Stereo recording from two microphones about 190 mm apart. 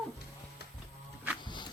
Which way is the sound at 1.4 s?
25° left (ahead or behind).